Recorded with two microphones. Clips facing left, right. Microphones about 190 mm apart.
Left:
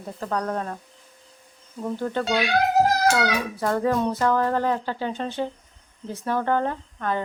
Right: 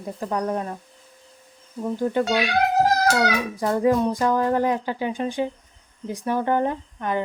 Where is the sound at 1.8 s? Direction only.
10° right (ahead or behind).